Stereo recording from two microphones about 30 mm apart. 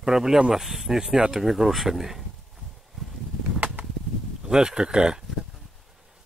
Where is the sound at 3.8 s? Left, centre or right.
Right.